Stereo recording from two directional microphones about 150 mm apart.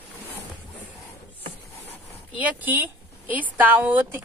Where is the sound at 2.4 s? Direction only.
10° right (ahead or behind).